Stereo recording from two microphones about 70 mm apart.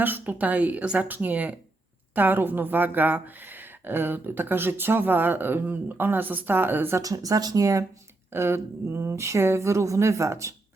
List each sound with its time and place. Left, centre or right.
0.0 s a woman's voice: right
7.0 s speech: right
8.3 s speech: right